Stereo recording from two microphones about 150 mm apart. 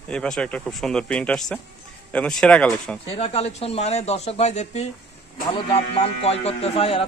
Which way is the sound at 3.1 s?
40° left (ahead or behind).